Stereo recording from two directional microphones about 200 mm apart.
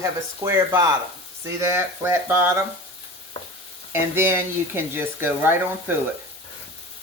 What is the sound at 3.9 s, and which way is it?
Speech, 10° right (ahead or behind).